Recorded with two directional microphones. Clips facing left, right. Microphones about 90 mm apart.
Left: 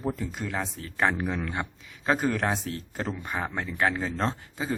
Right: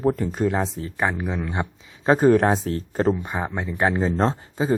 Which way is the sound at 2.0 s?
35° right (ahead or behind).